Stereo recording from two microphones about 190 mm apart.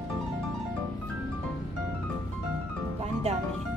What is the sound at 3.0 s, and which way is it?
Music, 35° right (ahead or behind).